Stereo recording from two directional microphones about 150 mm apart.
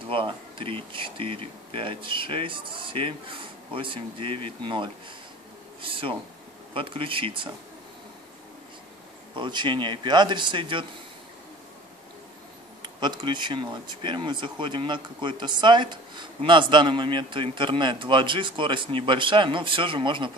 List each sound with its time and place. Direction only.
0.0 s speech: 35° right (ahead or behind)
9.3 s speech: 30° right (ahead or behind)
12.8 s speech: 30° right (ahead or behind)